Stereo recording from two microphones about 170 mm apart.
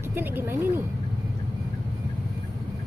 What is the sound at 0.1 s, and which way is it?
Speech, 10° right (ahead or behind).